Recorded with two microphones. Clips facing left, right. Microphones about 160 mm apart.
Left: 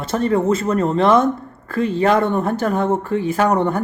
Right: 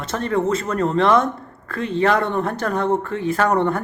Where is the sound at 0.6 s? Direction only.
5° left (ahead or behind).